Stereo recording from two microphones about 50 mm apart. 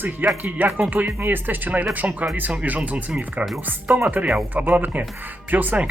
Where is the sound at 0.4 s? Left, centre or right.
Right.